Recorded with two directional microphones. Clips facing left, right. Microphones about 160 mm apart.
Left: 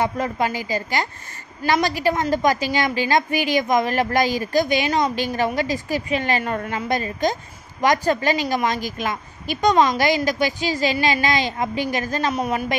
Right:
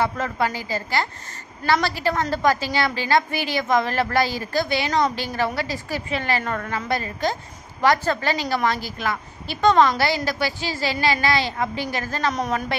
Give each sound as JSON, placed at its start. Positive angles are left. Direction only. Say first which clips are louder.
{"t": 0.0, "sound": "a woman's voice", "louder": "left 1 dB", "side_deg": 15}